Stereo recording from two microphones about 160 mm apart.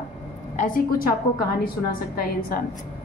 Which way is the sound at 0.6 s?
65° left (ahead or behind).